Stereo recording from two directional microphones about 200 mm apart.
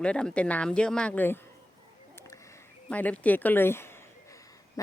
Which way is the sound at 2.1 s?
15° left (ahead or behind).